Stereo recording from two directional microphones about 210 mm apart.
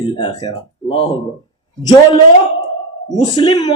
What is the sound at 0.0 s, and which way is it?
A man's voice, 20° left (ahead or behind).